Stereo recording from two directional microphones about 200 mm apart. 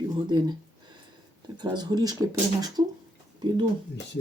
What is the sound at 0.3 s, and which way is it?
Speech, 20° right (ahead or behind).